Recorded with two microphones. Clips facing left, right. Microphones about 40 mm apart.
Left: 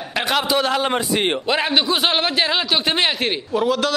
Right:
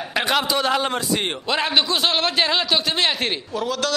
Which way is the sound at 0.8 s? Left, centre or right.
Centre.